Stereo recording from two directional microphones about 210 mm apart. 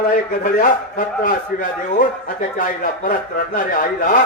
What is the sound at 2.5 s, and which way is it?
A man's voice, 40° left (ahead or behind).